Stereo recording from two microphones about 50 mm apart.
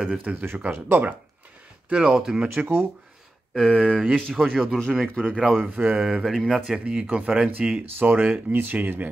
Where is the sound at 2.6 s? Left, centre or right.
Right.